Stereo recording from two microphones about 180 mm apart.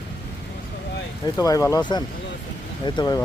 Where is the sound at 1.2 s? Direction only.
20° left (ahead or behind).